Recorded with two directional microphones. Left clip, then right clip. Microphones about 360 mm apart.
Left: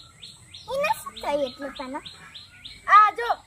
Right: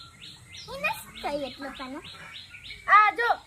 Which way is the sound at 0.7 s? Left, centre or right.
Centre.